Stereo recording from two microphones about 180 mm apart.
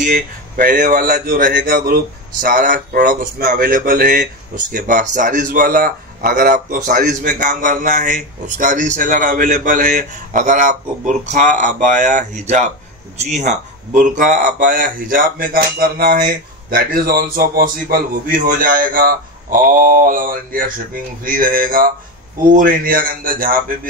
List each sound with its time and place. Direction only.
0.0 s speech: 50° right (ahead or behind)